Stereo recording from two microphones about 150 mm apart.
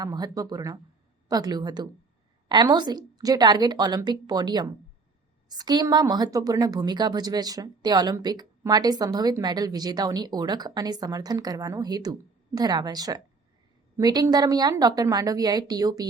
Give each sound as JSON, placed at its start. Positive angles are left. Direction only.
{"t": 0.0, "sound": "a woman's voice", "side_deg": -25}